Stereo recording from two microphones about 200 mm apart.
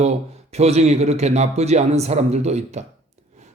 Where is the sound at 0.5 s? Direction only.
35° right (ahead or behind).